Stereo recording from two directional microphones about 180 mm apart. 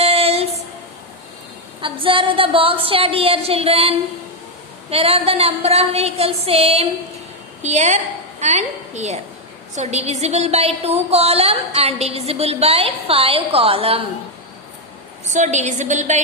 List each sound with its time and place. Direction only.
0.0 s female singing: 35° right (ahead or behind)
1.8 s a woman's voice: 30° right (ahead or behind)
15.2 s a woman's voice: 40° right (ahead or behind)